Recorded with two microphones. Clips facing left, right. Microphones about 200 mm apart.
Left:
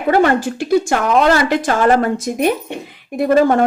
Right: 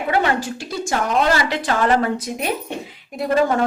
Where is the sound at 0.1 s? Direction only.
50° left (ahead or behind).